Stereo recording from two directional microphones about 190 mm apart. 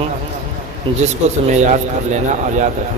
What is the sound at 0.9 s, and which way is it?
Speech, 25° right (ahead or behind).